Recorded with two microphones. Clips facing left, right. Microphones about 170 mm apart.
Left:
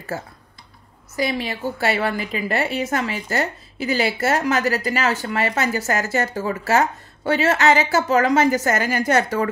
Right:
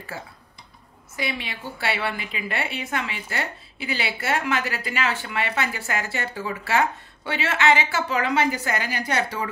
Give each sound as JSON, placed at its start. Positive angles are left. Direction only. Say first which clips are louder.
{"t": 0.1, "sound": "a woman's voice", "louder": "left 8 dB", "side_deg": 45}